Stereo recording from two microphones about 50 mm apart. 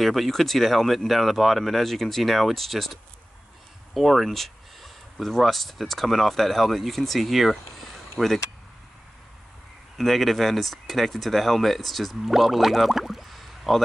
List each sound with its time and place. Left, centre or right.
0.0 s speech: centre
9.9 s speech: centre